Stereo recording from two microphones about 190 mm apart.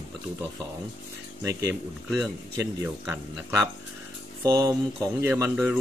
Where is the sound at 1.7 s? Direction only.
Centre (ahead or behind).